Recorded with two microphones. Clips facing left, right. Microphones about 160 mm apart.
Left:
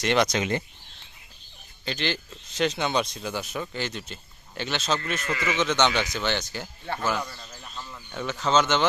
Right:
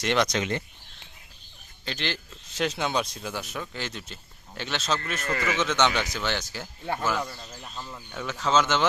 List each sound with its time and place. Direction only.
0.0 s speech: centre (ahead or behind)
0.3 s speech: 15° left (ahead or behind)
1.8 s speech: centre (ahead or behind)
7.8 s a sound: 15° right (ahead or behind)
8.1 s speech: centre (ahead or behind)